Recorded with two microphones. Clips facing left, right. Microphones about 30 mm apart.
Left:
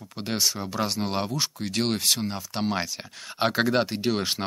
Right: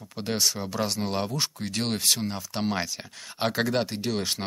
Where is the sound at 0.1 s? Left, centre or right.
Centre.